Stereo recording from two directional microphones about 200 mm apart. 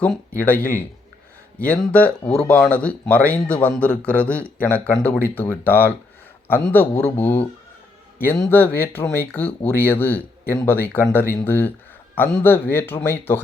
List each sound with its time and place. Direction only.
0.0 s speech: 10° left (ahead or behind)